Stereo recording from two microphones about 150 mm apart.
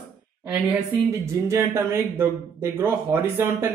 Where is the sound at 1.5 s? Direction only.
15° right (ahead or behind).